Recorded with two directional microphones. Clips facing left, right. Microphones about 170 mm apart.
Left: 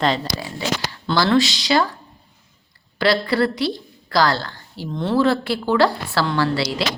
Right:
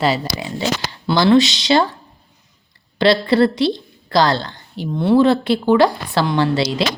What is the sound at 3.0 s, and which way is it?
A woman's voice, 25° right (ahead or behind).